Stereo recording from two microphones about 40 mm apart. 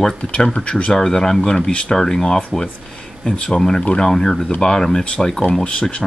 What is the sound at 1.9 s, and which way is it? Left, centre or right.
Speech, centre.